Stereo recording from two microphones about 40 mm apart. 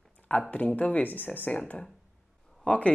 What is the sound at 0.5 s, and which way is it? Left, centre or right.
Speech, left.